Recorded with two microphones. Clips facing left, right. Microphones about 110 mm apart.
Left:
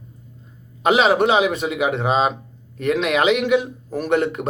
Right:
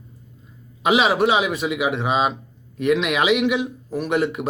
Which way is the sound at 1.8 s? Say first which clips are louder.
Left 3 dB; 5° right (ahead or behind).